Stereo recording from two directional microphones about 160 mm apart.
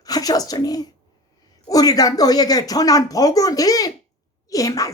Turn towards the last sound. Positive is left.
turn(degrees=20)  # may be behind; listen again after turning